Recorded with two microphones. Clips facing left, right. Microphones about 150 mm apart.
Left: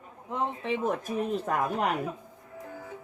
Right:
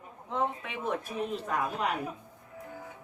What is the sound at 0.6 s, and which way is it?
Speech, 30° left (ahead or behind).